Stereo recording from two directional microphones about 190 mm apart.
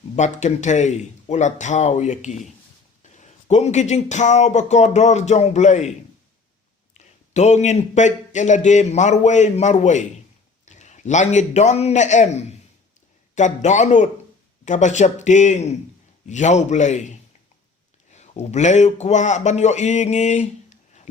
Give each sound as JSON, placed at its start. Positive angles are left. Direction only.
{"t": 0.2, "sound": "a man's voice", "side_deg": 35}
{"t": 6.9, "sound": "a man's voice", "side_deg": 35}